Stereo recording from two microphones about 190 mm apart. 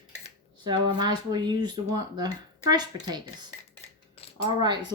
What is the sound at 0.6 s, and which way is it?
Speech, 25° right (ahead or behind).